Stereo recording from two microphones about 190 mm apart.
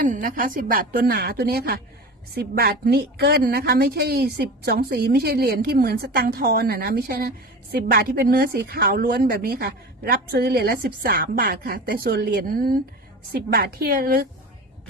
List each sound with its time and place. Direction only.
0.0 s a woman's voice: 45° right (ahead or behind)